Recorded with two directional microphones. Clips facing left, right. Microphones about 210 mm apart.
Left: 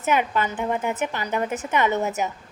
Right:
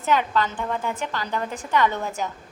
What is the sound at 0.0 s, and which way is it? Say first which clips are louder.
A woman's voice: even; 15° left (ahead or behind).